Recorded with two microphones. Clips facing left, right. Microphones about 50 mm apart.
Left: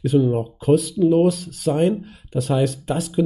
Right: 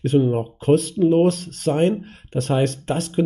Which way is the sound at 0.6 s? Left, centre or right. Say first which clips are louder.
Even; right.